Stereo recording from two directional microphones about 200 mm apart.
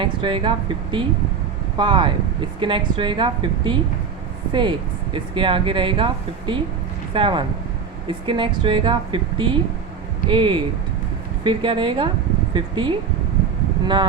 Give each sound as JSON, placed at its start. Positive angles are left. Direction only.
{"t": 0.0, "sound": "speech", "side_deg": -25}
{"t": 5.1, "sound": "speech", "side_deg": -25}